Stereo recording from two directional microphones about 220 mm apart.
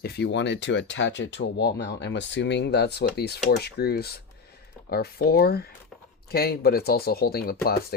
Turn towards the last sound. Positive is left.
turn(degrees=45)  # may be behind; listen again after turning